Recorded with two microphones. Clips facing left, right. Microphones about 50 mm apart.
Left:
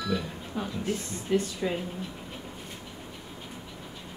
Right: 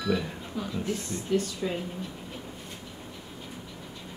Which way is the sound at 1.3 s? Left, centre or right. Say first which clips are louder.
Left 1 dB; centre.